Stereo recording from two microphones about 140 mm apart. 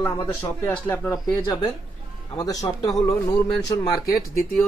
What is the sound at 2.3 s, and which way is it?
Speech, 25° left (ahead or behind).